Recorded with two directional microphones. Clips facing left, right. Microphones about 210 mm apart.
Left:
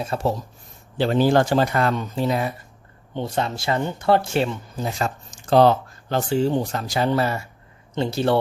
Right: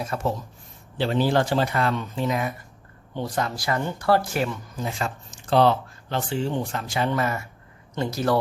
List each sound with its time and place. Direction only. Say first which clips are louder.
0.0 s speech: left 3 dB; 30° left (ahead or behind)
0.9 s speech: left 4 dB; 45° left (ahead or behind); by 4.9 s 25° left (ahead or behind)
4.9 s speech: left 4 dB; 40° left (ahead or behind)